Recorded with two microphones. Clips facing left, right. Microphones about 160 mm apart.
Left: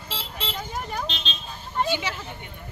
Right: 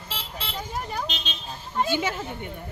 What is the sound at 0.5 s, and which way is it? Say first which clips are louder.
Vehicle: right 2 dB; 5° right (ahead or behind).